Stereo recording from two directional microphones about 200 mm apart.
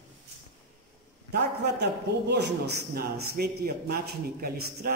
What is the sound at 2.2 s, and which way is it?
A man's voice, 55° right (ahead or behind).